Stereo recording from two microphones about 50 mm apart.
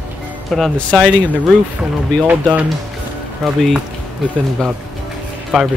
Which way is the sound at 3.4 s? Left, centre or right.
Centre.